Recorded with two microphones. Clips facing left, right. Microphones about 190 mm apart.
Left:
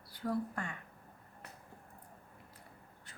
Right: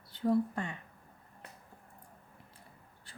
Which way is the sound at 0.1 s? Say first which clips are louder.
Right 7 dB; 25° right (ahead or behind).